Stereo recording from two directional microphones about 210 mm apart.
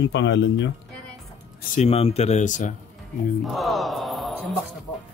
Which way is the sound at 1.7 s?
30° left (ahead or behind).